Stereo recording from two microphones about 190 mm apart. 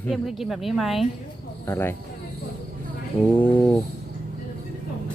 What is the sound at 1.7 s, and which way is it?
Speech, 10° left (ahead or behind).